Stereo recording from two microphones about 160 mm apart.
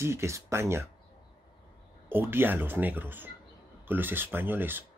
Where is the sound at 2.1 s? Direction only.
15° right (ahead or behind).